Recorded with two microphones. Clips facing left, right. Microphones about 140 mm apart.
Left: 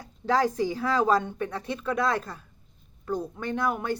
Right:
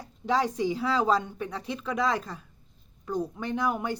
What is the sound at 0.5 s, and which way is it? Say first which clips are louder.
Speech: left 1 dB; 10° right (ahead or behind).